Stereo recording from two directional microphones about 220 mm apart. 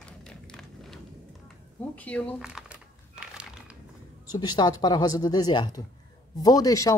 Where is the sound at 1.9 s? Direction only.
5° left (ahead or behind).